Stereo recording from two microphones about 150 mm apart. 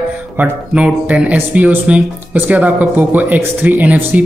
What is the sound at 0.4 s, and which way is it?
Speech, 10° right (ahead or behind).